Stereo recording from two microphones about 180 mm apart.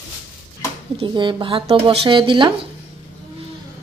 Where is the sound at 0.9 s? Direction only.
25° right (ahead or behind).